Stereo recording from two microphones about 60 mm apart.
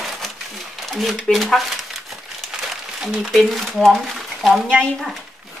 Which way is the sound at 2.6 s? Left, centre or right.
Centre.